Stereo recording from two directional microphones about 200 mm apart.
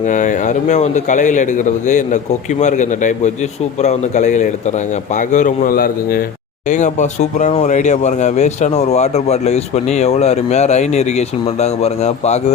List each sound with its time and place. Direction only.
0.0 s a man's voice: 40° left (ahead or behind)